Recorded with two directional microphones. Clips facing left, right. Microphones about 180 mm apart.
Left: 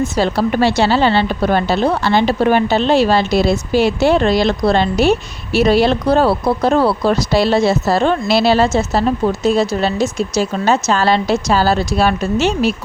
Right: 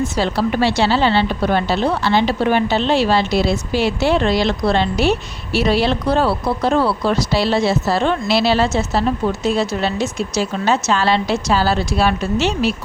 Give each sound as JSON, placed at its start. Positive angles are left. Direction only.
{"t": 0.0, "sound": "speech", "side_deg": 45}